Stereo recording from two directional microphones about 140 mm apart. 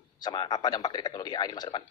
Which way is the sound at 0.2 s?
30° left (ahead or behind).